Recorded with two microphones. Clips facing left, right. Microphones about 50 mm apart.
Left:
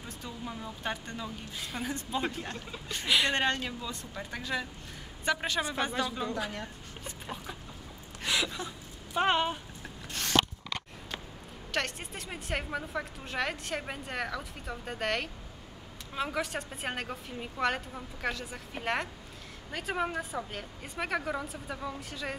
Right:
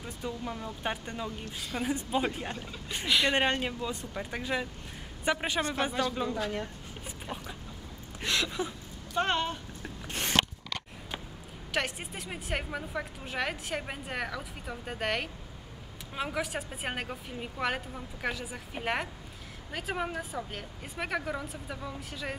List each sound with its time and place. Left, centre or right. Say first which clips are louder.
0.0 s speech: right 4 dB; centre
1.4 s a woman's voice: right 2 dB; centre
1.8 s speech: right 4 dB; centre
3.1 s a woman's voice: even; centre
3.3 s speech: right 2 dB; centre
6.1 s a woman's voice: right 2 dB; centre
8.5 s a sound: right 4 dB; centre
9.1 s speech: left 2 dB; centre
10.0 s a sound: even; right
11.7 s a woman's voice: right 1 dB; centre